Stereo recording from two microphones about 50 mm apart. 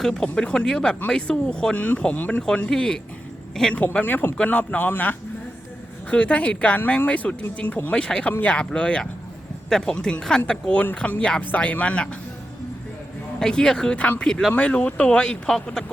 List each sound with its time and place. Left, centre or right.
0.0 s speech: centre
1.7 s speech: left
2.6 s speech: centre
4.0 s speech: left
6.1 s speech: left
8.3 s speech: left
8.5 s speech: left
13.4 s speech: centre
14.5 s speech: left